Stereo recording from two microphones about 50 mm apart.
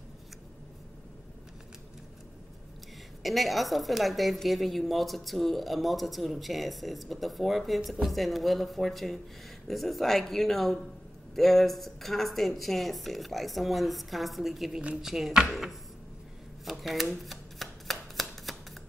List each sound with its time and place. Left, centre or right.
3.2 s a woman's voice: centre
16.8 s a woman's voice: centre
17.2 s shuffling cards: centre